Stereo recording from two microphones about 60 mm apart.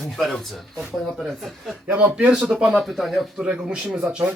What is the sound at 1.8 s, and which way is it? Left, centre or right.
Speech, right.